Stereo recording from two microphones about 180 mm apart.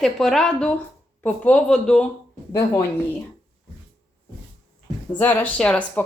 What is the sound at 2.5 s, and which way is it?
Speech, 20° left (ahead or behind).